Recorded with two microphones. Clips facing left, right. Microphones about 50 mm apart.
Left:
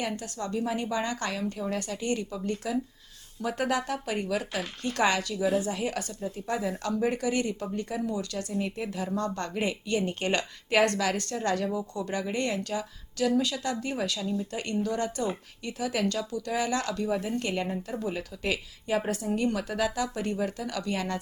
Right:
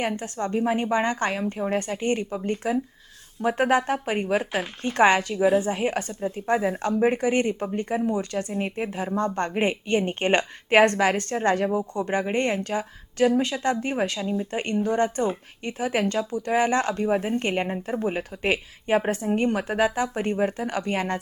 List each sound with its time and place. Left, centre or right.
0.0 s speech: right